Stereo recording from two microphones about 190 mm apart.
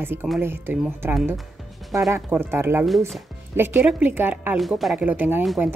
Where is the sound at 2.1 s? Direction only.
10° right (ahead or behind).